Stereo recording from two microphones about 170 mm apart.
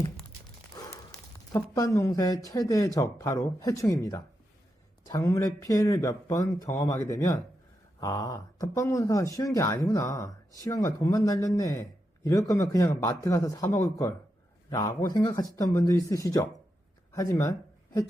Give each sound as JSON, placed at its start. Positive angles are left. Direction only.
{"t": 1.5, "sound": "speech", "side_deg": 20}